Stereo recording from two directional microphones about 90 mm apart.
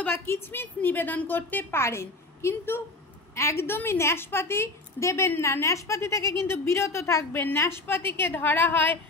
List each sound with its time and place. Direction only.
0.0 s a woman's voice: 25° left (ahead or behind)